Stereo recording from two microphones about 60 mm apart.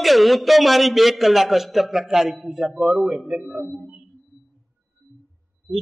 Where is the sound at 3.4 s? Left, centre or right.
Right.